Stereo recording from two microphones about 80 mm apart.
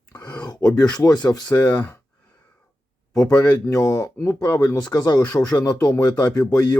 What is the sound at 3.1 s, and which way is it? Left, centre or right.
Speech, left.